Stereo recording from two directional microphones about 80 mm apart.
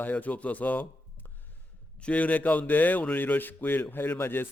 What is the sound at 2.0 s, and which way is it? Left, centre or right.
Speech, centre.